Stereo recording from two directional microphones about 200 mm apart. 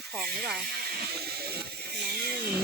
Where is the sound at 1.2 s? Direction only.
50° right (ahead or behind).